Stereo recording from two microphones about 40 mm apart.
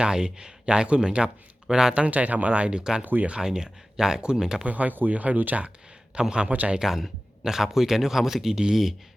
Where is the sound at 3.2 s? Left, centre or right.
Centre.